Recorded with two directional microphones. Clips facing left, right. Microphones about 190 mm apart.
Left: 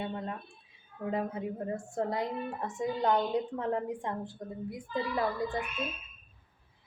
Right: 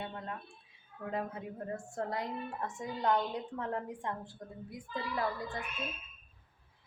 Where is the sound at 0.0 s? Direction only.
20° left (ahead or behind).